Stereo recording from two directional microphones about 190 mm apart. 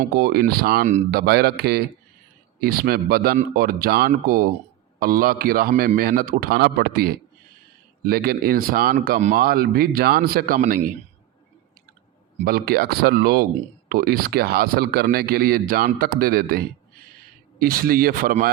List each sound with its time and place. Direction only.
0.0 s a man's voice: 50° right (ahead or behind)
12.5 s speech: 50° right (ahead or behind)